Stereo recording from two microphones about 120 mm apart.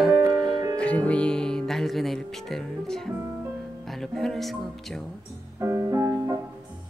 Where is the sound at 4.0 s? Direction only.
5° left (ahead or behind).